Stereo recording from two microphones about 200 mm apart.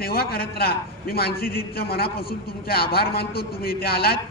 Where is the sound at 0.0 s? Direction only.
50° left (ahead or behind).